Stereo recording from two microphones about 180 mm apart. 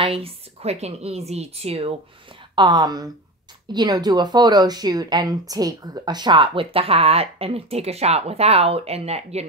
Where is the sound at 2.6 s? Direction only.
25° right (ahead or behind).